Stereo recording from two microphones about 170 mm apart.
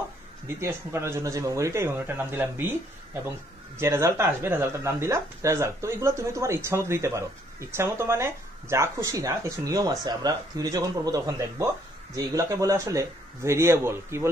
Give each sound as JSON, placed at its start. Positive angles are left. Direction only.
{"t": 0.6, "sound": "speech", "side_deg": -15}
{"t": 3.7, "sound": "speech", "side_deg": -15}